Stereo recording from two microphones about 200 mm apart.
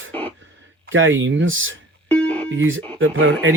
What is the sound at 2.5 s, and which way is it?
Speech, 80° right.